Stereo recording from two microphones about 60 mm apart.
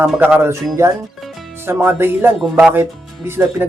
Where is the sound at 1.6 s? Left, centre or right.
Right.